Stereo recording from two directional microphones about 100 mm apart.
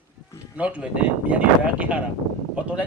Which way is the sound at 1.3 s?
15° right (ahead or behind).